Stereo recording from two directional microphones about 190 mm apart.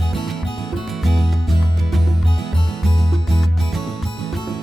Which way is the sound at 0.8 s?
Centre (ahead or behind).